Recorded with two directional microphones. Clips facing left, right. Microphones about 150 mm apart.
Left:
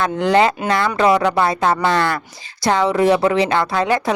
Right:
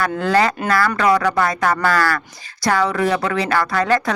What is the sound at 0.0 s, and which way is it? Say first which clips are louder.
Speech: left 2 dB; 20° left (ahead or behind).